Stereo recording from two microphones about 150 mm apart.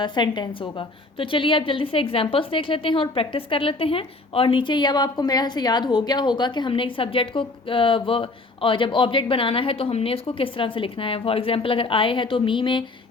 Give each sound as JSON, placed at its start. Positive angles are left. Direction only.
{"t": 0.0, "sound": "a woman's voice", "side_deg": 30}